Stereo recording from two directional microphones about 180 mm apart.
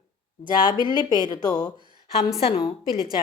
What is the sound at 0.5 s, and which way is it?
Speech, 25° left (ahead or behind).